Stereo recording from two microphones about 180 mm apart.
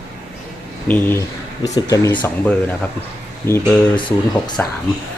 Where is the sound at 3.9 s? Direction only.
25° left (ahead or behind).